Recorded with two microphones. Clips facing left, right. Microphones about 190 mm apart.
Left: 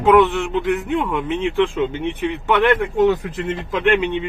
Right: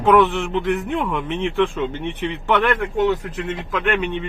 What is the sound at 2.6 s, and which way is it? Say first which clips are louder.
Speech: left 5 dB; 20° left (ahead or behind).